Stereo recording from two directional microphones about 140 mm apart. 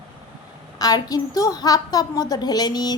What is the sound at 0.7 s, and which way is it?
A woman's voice, 25° left (ahead or behind).